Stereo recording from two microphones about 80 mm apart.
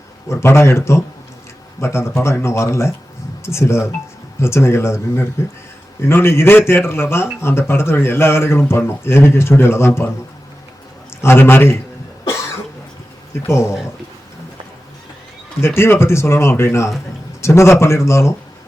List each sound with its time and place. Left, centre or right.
0.3 s speech: left
11.2 s a man's voice: left
13.5 s speech: left
15.6 s speech: left